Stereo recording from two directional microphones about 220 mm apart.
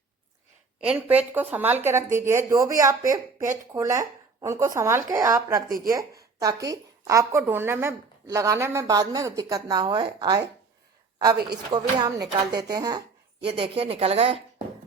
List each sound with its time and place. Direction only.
0.9 s speech: 5° right (ahead or behind)
5.6 s speech: 40° right (ahead or behind)
6.4 s speech: 15° right (ahead or behind)
11.4 s a woman's voice: 20° right (ahead or behind)